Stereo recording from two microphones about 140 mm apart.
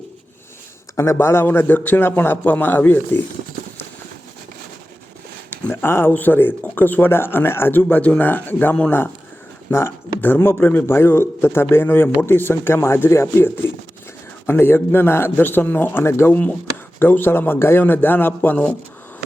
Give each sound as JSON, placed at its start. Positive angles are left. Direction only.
{"t": 0.9, "sound": "a man's voice", "side_deg": 20}
{"t": 5.5, "sound": "a man's voice", "side_deg": 15}